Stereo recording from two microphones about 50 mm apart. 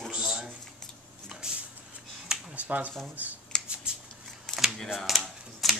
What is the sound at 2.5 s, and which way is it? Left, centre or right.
Speech, right.